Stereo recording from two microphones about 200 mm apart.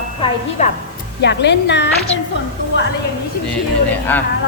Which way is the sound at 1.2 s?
60° left (ahead or behind).